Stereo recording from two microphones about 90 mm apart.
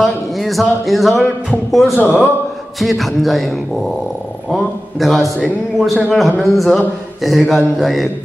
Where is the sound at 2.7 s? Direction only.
Centre (ahead or behind).